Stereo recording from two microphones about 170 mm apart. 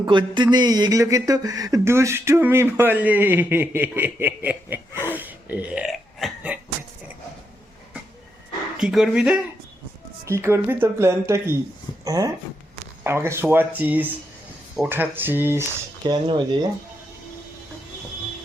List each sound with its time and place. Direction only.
0.0 s speech: 25° right (ahead or behind); by 6.6 s 5° right (ahead or behind)
8.8 s speech: centre (ahead or behind)
10.2 s speech: 15° right (ahead or behind)
16.0 s speech: 25° right (ahead or behind)